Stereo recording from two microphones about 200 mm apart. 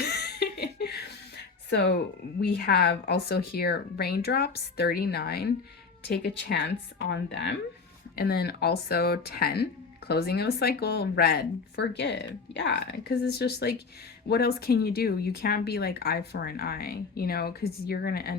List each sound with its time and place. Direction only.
0.0 s laughter: 55° left (ahead or behind)
1.7 s speech: 60° left (ahead or behind)